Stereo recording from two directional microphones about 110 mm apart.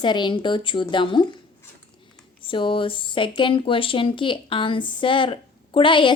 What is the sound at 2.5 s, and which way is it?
Speech, 50° left (ahead or behind).